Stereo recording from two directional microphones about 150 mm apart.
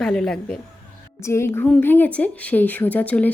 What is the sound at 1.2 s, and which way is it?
A woman's voice, 15° left (ahead or behind).